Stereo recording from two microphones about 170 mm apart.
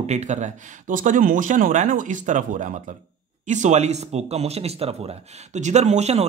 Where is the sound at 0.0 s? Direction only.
40° right (ahead or behind).